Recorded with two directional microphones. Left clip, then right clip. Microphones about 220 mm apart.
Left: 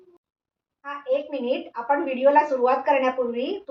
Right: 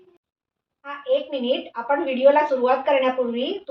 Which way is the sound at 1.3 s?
Centre (ahead or behind).